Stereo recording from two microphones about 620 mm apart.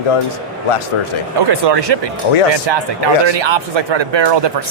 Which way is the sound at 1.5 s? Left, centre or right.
Right.